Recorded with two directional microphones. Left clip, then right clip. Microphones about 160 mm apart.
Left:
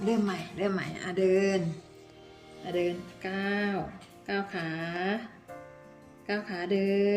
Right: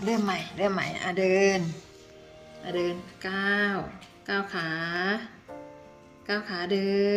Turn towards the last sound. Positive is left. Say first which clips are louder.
# right 1 dB
turn(degrees=-30)  # may be behind; listen again after turning